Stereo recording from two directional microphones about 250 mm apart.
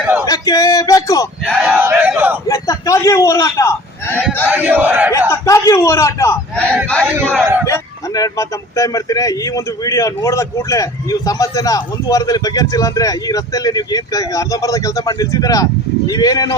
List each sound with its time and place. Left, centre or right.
0.3 s speech: centre
1.5 s a sound: centre
2.5 s a sound: centre
4.4 s battle cry: centre
5.3 s a man's voice: centre
7.6 s a man's voice: centre